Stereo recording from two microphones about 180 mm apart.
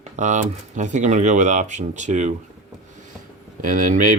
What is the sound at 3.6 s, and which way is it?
Speech, 50° right (ahead or behind).